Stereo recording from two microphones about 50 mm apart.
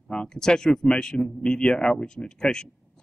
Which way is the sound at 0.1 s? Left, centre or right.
Centre.